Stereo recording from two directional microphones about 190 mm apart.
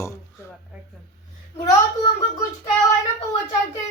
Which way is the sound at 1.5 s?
25° left (ahead or behind).